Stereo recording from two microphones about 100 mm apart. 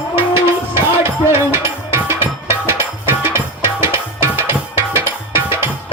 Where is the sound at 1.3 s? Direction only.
25° right (ahead or behind).